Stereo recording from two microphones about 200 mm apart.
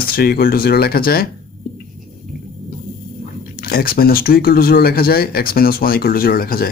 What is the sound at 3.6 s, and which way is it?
Speech, 50° left (ahead or behind).